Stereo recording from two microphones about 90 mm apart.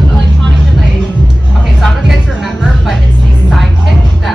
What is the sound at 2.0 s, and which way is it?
Music, 5° right (ahead or behind).